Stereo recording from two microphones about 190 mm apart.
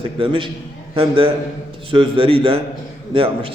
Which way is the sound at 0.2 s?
25° right (ahead or behind).